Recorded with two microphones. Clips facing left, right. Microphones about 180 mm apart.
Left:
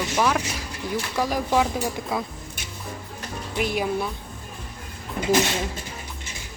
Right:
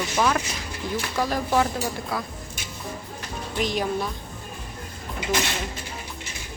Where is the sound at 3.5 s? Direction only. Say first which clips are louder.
Left 1 dB; 5° left (ahead or behind).